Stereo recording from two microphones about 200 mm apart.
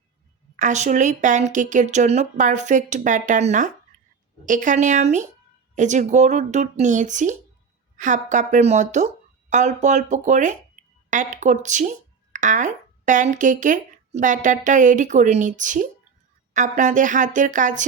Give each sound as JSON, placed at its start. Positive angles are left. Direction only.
{"t": 0.5, "sound": "a woman's voice", "side_deg": -35}